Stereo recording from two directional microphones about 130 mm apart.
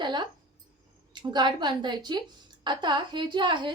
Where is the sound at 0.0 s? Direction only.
35° right (ahead or behind).